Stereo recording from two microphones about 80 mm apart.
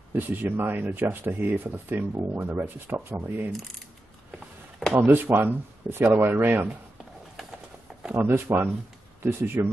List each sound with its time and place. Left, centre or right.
0.1 s speech: right
4.9 s speech: right
7.9 s a sound: centre
8.3 s speech: right